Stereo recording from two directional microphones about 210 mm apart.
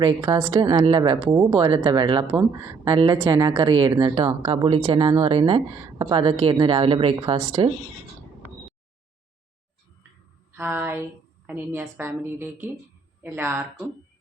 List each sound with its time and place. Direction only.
0.0 s a woman's voice: 15° right (ahead or behind)
10.6 s a woman's voice: 10° right (ahead or behind)